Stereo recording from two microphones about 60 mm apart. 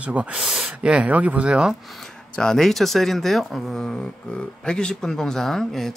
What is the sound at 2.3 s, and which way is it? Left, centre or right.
Speech, centre.